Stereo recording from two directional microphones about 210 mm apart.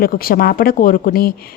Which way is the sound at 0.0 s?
45° left (ahead or behind).